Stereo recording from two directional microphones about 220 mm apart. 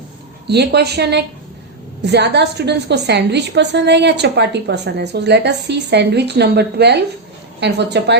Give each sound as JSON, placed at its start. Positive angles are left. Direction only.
{"t": 0.4, "sound": "a woman's voice", "side_deg": -50}